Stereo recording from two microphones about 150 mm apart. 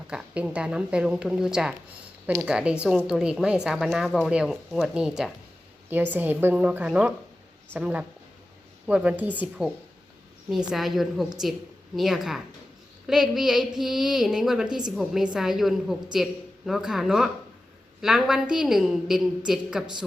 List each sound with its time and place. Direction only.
0.1 s a woman's voice: 5° right (ahead or behind)